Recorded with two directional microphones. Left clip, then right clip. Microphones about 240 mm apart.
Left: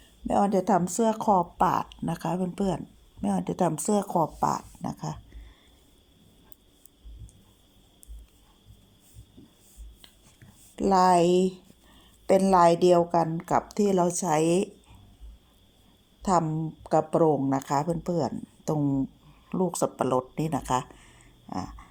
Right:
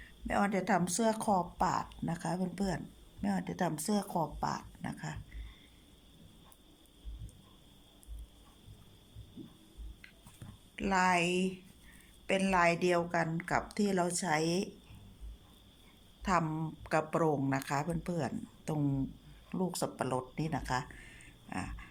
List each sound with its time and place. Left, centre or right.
0.3 s speech: centre
10.8 s a woman's voice: centre
16.8 s speech: centre
21.5 s a sound: centre